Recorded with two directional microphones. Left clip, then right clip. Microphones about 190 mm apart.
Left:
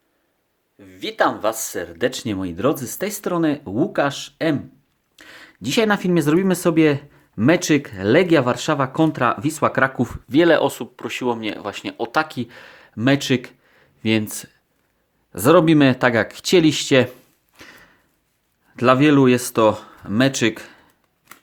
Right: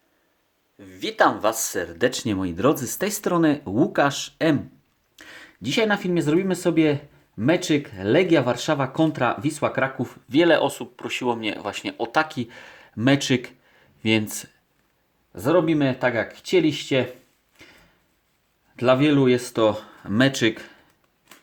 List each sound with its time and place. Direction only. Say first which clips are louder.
0.8 s speech: even; centre (ahead or behind)
15.3 s speech: left 6 dB; 35° left (ahead or behind)
17.6 s a sound: left 6 dB; 30° left (ahead or behind)
18.8 s speech: left 4 dB; 25° left (ahead or behind)